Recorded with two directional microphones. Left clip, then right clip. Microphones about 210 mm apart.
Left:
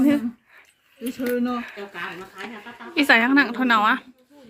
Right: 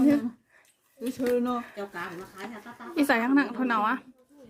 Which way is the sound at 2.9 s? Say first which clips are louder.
Left 7 dB; 5° right (ahead or behind).